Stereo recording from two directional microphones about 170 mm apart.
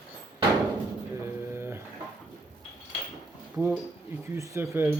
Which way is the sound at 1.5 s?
15° right (ahead or behind).